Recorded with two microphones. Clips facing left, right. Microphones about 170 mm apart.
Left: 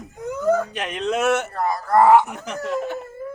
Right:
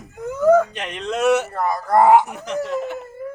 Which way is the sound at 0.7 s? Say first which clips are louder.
Left 2 dB; 5° left (ahead or behind).